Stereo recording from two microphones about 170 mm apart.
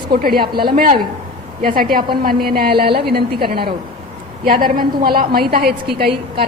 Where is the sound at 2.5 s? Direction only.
60° right (ahead or behind).